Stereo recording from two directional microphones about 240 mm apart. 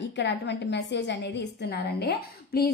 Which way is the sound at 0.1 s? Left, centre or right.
Left.